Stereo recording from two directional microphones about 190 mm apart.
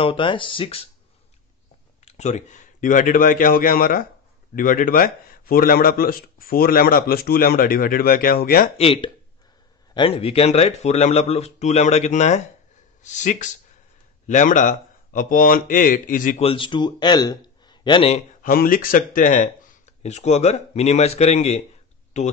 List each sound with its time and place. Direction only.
0.0 s speech: 25° left (ahead or behind)
2.0 s speech: 35° left (ahead or behind)
8.7 s speech: 30° left (ahead or behind)
16.4 s a man's voice: 25° left (ahead or behind)
18.4 s speech: 50° left (ahead or behind)